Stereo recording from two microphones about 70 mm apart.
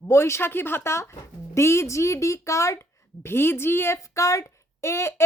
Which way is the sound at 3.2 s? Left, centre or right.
Left.